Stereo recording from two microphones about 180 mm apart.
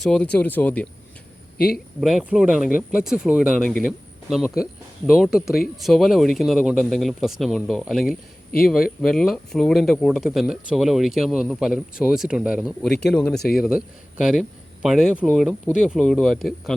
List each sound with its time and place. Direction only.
0.0 s speech: 5° left (ahead or behind)
1.5 s speech: 60° left (ahead or behind)
2.0 s speech: centre (ahead or behind)